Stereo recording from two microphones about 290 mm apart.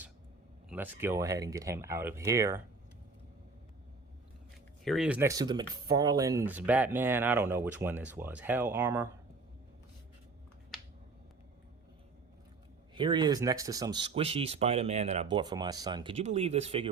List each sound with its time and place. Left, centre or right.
0.7 s speech: centre
4.9 s speech: centre
12.9 s speech: centre